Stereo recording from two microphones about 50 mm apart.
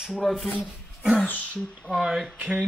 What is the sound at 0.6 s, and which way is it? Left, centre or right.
Speech, centre.